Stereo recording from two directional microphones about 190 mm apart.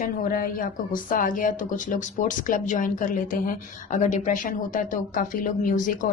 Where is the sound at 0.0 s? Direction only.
50° left (ahead or behind).